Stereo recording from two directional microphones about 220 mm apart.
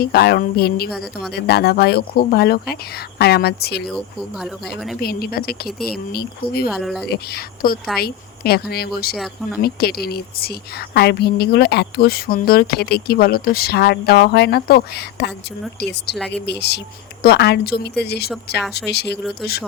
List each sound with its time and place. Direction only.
0.0 s a woman's voice: 45° left (ahead or behind)
0.9 s speech: centre (ahead or behind)
1.3 s a woman's voice: 45° left (ahead or behind)
3.8 s speech: centre (ahead or behind)
4.9 s a woman's voice: 45° left (ahead or behind)
6.7 s speech: centre (ahead or behind)
7.1 s a woman's voice: 45° left (ahead or behind)
9.1 s speech: centre (ahead or behind)
9.6 s a woman's voice: 45° left (ahead or behind)
19.1 s speech: centre (ahead or behind)